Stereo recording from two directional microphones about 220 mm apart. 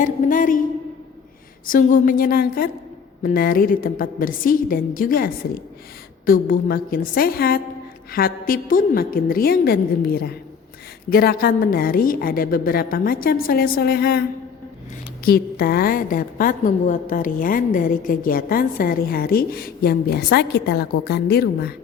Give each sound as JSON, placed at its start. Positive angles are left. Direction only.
{"t": 0.0, "sound": "a woman's voice", "side_deg": 35}
{"t": 1.6, "sound": "a woman's voice", "side_deg": 40}